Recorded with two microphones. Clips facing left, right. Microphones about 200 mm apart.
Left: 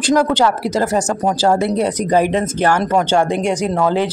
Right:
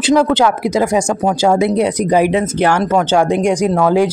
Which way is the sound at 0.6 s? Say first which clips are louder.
Right 3 dB; 10° right (ahead or behind).